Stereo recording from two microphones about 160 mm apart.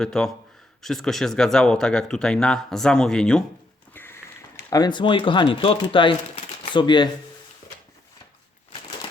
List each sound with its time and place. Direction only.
0.0 s speech: 5° left (ahead or behind); by 7.1 s 30° left (ahead or behind)